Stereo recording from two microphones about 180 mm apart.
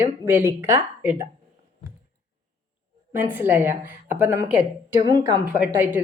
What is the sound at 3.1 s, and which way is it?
Speech, 10° right (ahead or behind).